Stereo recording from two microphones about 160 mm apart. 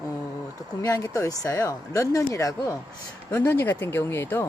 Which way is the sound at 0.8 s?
20° left (ahead or behind).